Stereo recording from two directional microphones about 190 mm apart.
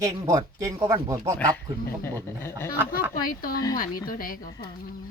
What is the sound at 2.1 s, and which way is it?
Speech, 10° left (ahead or behind).